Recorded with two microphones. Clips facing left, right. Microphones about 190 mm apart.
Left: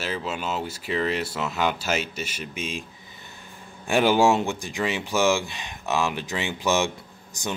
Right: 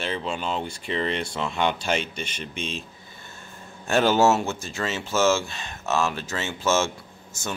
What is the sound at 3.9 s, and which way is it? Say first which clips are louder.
Speech: even; 15° left (ahead or behind).